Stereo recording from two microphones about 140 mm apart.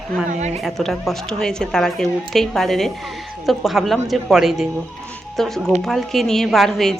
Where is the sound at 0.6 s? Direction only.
Centre (ahead or behind).